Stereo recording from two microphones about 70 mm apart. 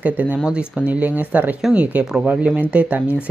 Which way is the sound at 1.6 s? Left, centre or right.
Centre.